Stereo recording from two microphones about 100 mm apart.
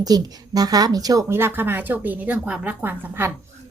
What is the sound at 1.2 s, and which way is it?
A woman's voice, 25° right (ahead or behind).